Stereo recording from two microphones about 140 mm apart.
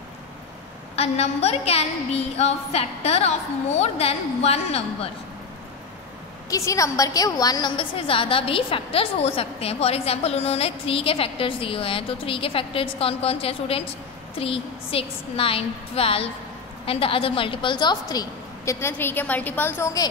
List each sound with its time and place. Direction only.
0.9 s a woman's voice: 50° left (ahead or behind)
6.5 s a woman's voice: 25° left (ahead or behind)